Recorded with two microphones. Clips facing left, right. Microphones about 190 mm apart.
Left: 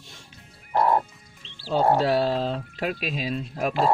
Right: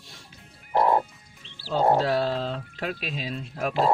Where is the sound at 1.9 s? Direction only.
15° left (ahead or behind).